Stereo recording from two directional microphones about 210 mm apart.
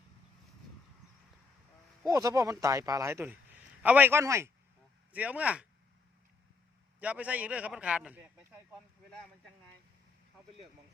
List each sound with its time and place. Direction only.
2.0 s a man's voice: 15° right (ahead or behind)
7.0 s a man's voice: 5° right (ahead or behind)